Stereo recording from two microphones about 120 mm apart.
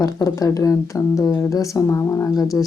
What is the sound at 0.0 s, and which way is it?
Speech, 30° left (ahead or behind).